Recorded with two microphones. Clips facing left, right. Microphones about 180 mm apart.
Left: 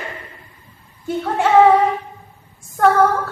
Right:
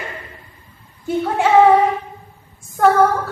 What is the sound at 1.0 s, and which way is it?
Speech, 5° right (ahead or behind).